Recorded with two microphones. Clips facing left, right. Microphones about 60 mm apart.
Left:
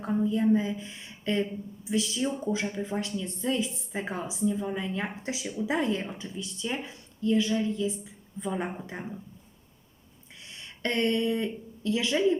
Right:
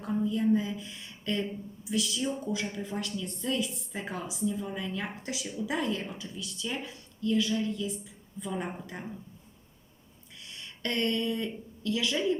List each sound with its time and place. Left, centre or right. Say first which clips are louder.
0.0 s a woman's voice: left 3 dB; left
10.4 s speech: left 3 dB; left